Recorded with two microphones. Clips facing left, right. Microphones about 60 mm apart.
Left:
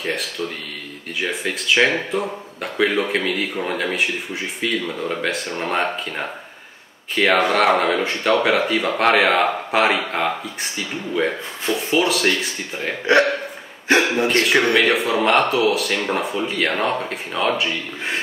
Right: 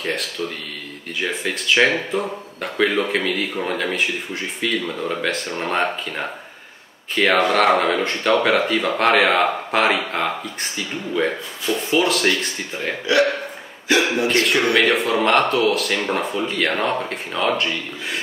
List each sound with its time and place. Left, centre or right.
0.0 s speech: centre
13.0 s speech: left
14.8 s speech: centre